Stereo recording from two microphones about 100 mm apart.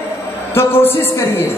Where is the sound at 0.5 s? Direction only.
25° left (ahead or behind).